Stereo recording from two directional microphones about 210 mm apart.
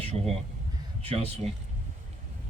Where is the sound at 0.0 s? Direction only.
30° right (ahead or behind).